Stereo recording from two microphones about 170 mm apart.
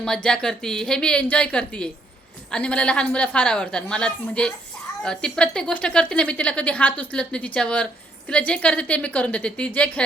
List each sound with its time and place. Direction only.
0.0 s a woman's voice: 5° left (ahead or behind)